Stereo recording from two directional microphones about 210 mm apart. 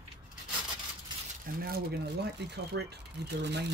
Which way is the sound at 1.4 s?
45° right (ahead or behind).